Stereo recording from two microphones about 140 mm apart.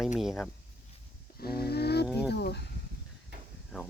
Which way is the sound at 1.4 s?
90° left.